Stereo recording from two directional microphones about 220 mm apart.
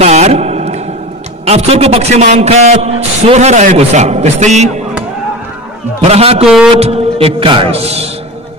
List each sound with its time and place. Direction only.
0.0 s a sound: 30° right (ahead or behind)
1.4 s a man's voice: 30° right (ahead or behind)
5.9 s music: 25° right (ahead or behind)
6.4 s speech: 5° right (ahead or behind)
6.8 s music: 25° right (ahead or behind)